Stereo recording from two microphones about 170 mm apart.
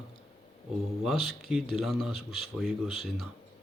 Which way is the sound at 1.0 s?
Centre (ahead or behind).